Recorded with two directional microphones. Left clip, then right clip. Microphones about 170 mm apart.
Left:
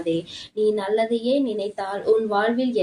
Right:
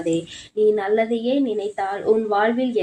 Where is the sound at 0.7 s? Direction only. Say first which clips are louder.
Even; 15° right (ahead or behind).